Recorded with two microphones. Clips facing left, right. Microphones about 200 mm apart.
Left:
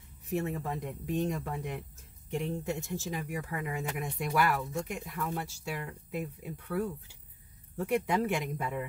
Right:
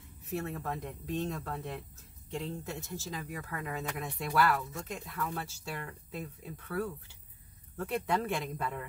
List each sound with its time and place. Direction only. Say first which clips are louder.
0.3 s speech: left 3 dB; 20° left (ahead or behind)